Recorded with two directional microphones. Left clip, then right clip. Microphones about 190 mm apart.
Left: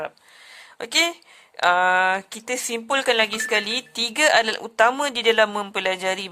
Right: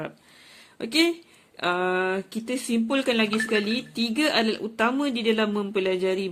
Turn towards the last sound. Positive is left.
turn(degrees=50)  # may be behind; listen again after turning